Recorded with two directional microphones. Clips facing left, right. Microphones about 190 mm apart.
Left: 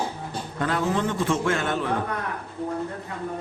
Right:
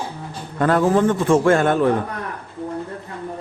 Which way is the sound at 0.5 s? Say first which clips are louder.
Right 9 dB; 50° right (ahead or behind).